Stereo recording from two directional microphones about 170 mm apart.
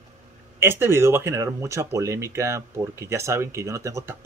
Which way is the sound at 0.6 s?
15° right (ahead or behind).